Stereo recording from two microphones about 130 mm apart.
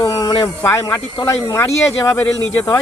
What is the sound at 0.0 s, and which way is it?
Speech, 30° left (ahead or behind).